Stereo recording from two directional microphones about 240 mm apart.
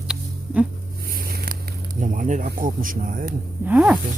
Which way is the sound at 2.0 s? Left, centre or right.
Right.